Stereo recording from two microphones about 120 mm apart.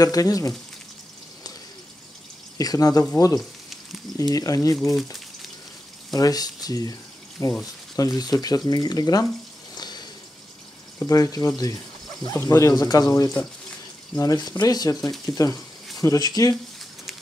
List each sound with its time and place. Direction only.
0.0 s speech: 30° left (ahead or behind)
2.5 s speech: 30° left (ahead or behind)
3.3 s frying: centre (ahead or behind)
4.2 s speech: 30° left (ahead or behind)
6.1 s speech: 30° left (ahead or behind)
9.8 s a sound: 35° left (ahead or behind)
11.0 s speech: 30° left (ahead or behind)